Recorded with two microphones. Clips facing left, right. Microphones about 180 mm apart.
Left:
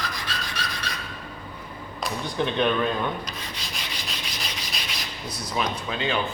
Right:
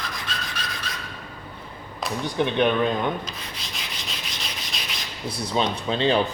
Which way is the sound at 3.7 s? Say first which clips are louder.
Even; centre (ahead or behind).